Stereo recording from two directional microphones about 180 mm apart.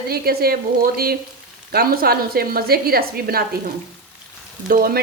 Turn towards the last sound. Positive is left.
turn(degrees=-55)  # may be behind; listen again after turning